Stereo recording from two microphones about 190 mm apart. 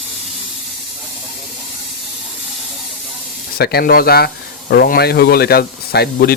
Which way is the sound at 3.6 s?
55° left (ahead or behind).